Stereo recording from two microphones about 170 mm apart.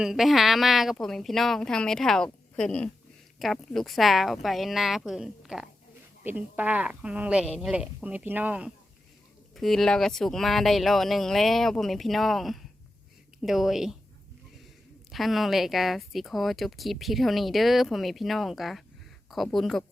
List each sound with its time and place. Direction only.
0.0 s a woman's voice: centre (ahead or behind)
9.6 s speech: centre (ahead or behind)
15.1 s speech: centre (ahead or behind)